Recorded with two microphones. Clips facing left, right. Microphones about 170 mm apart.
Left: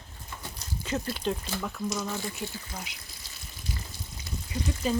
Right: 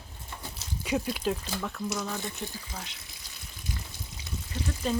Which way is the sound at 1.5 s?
Centre (ahead or behind).